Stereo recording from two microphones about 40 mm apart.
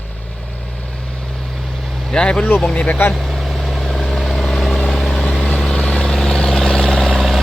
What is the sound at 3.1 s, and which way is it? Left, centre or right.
Vehicle, centre.